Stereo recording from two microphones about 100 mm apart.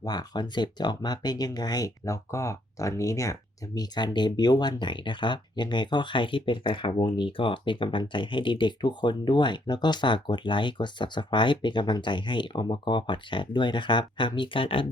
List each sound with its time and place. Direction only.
0.0 s speech: 40° left (ahead or behind)
3.8 s speech: 45° left (ahead or behind); by 14.8 s 65° left (ahead or behind)